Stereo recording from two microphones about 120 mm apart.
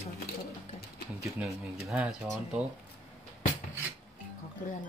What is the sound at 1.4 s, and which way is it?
Speech, 5° right (ahead or behind).